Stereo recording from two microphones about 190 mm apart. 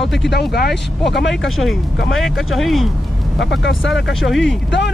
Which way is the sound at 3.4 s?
70° left (ahead or behind).